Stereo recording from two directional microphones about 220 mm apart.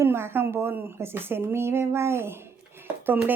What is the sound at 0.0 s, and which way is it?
Speech, 10° right (ahead or behind).